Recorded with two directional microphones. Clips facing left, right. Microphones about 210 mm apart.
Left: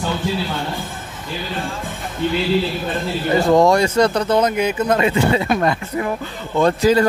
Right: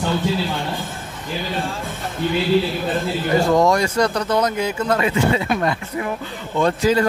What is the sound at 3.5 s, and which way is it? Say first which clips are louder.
Speech: left 6 dB; 30° left (ahead or behind).